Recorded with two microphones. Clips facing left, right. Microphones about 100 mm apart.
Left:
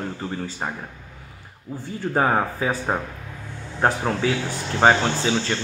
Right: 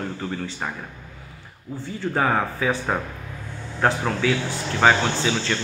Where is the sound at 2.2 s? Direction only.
20° left (ahead or behind).